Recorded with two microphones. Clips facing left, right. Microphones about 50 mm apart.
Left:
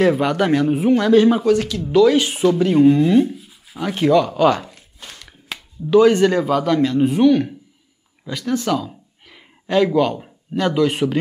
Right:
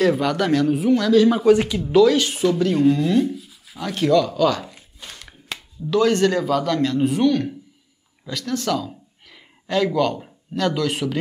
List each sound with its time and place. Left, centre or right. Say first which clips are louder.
0.0 s speech: left 3 dB; centre
1.4 s speech: right 2 dB; centre
2.0 s speech: left 3 dB; centre
4.3 s speech: left 4 dB; left
5.0 s a sound: left 1 dB; centre
5.9 s speech: left 5 dB; centre